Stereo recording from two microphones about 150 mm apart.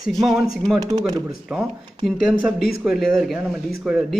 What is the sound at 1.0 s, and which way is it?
Speech, 25° right (ahead or behind).